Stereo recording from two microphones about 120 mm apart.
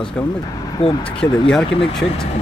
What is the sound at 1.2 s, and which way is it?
Speech, 5° left (ahead or behind).